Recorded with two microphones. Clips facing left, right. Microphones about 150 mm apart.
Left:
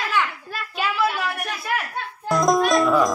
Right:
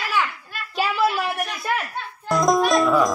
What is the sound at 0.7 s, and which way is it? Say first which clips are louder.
Speech: right 2 dB; 35° right (ahead or behind).